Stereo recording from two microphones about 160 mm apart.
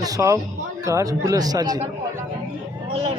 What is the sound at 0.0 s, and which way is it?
Speech, 20° right (ahead or behind).